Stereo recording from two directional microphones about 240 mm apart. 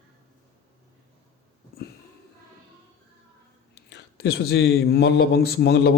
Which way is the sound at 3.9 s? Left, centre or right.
Left.